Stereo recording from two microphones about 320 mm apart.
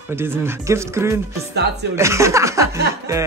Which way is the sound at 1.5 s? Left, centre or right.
Right.